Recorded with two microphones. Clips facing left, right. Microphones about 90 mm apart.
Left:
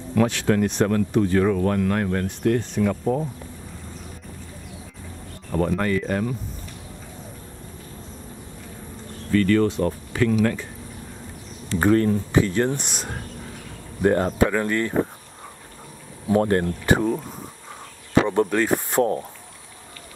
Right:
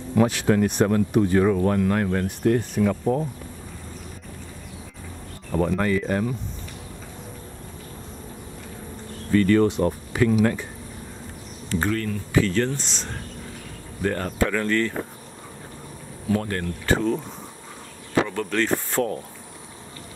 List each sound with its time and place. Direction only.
0.3 s speech: 5° right (ahead or behind)
5.5 s speech: centre (ahead or behind)
9.3 s speech: 20° right (ahead or behind)
11.9 s speech: 30° left (ahead or behind)
16.3 s speech: 30° left (ahead or behind)
16.8 s speech: 15° left (ahead or behind)
18.3 s speech: 25° left (ahead or behind)